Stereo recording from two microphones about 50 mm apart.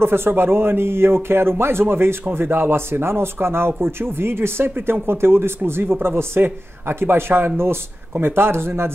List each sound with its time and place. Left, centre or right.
0.0 s speech: right